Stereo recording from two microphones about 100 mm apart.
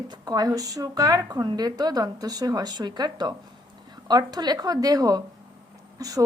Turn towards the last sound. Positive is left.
turn(degrees=-35)  # may be behind; listen again after turning